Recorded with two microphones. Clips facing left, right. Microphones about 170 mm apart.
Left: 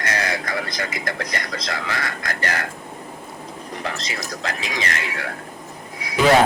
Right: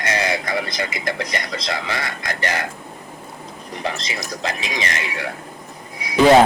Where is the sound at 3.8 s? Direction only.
20° right (ahead or behind).